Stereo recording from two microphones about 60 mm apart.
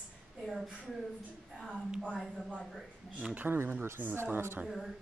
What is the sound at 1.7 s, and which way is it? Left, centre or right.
Speech, centre.